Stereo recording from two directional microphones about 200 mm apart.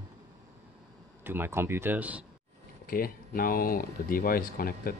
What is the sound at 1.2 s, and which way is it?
Speech, 10° right (ahead or behind).